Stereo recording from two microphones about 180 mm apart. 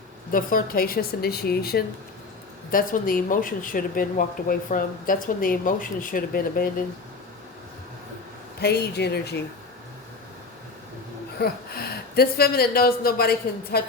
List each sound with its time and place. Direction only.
0.3 s speech: 50° left (ahead or behind)
8.6 s speech: 65° left (ahead or behind)
11.3 s speech: 60° left (ahead or behind)